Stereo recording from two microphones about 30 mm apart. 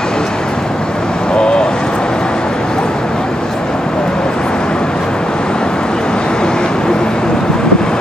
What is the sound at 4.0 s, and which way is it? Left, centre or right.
Vehicle, left.